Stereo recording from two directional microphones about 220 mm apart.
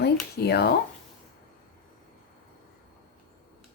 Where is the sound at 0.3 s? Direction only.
45° left (ahead or behind).